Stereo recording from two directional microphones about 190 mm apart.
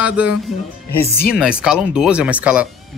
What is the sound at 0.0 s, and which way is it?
Speech, 5° right (ahead or behind).